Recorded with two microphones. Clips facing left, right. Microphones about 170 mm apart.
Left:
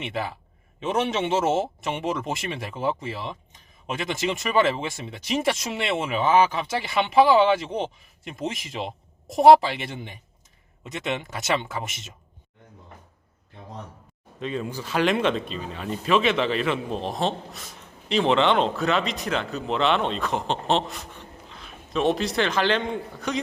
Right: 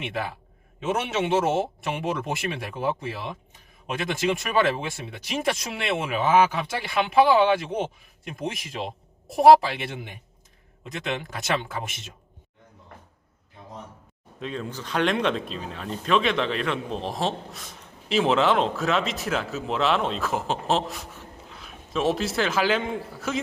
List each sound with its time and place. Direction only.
0.0 s speech: centre (ahead or behind)
14.3 s speech: centre (ahead or behind)